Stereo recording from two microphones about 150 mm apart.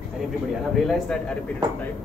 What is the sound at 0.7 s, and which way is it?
Speech, centre (ahead or behind).